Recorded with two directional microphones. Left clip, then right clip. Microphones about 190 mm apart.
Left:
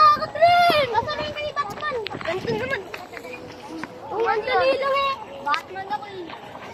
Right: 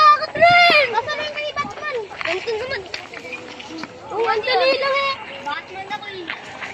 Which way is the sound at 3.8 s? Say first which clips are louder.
Right 2 dB; 45° right (ahead or behind).